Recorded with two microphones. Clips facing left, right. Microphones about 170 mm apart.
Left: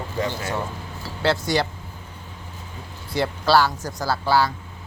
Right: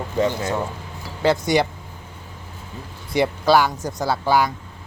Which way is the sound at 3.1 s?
15° right (ahead or behind).